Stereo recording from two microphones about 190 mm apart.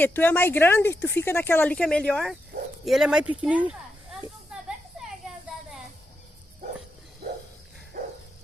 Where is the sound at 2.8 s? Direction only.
Centre (ahead or behind).